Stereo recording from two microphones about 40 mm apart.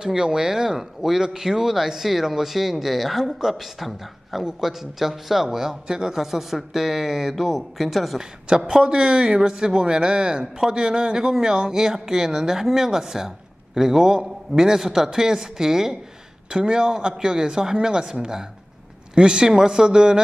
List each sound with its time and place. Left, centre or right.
0.0 s speech: centre
8.2 s a man's voice: centre